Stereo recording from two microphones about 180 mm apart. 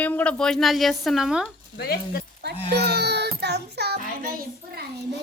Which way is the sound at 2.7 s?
65° right (ahead or behind).